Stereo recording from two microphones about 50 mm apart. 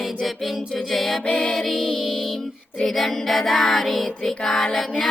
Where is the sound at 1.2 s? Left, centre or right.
Centre.